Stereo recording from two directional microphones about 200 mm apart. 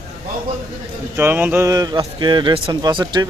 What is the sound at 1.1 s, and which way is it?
Speech, 10° right (ahead or behind).